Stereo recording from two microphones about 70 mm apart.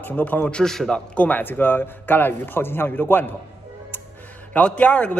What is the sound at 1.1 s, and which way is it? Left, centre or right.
A man's voice, left.